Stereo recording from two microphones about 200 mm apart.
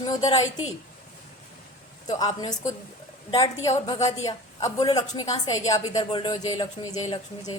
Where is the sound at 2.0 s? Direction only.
20° left (ahead or behind).